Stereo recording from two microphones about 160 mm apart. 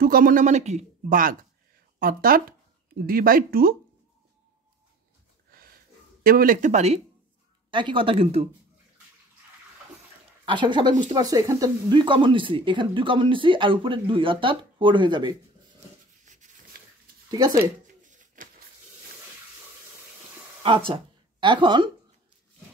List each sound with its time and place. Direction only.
0.0 s speech: 65° right (ahead or behind)
5.5 s a sound: 70° right (ahead or behind)
6.2 s speech: 65° right (ahead or behind); by 7.0 s 45° right (ahead or behind)
7.7 s speech: 30° right (ahead or behind)
10.4 s speech: 30° right (ahead or behind)
16.3 s a sound: 50° right (ahead or behind)
17.3 s speech: 25° right (ahead or behind)
18.0 s a sound: 55° right (ahead or behind)
20.6 s speech: 35° right (ahead or behind)